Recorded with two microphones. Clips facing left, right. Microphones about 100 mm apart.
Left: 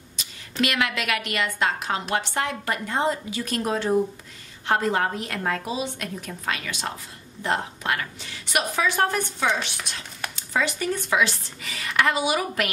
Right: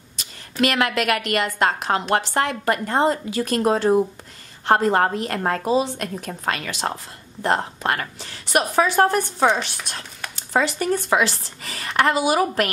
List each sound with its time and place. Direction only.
0.6 s a woman's voice: 45° right (ahead or behind)